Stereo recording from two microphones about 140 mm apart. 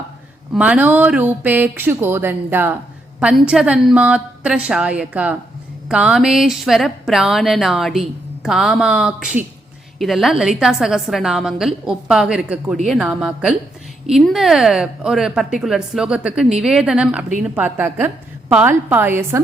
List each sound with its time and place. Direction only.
0.5 s a woman's voice: 10° right (ahead or behind)